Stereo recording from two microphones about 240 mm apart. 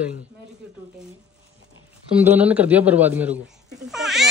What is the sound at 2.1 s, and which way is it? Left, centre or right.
A man's voice, centre.